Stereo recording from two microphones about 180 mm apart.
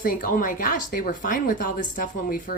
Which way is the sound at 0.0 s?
55° left (ahead or behind).